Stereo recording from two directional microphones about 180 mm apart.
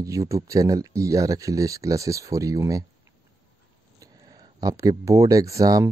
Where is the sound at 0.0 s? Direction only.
20° right (ahead or behind).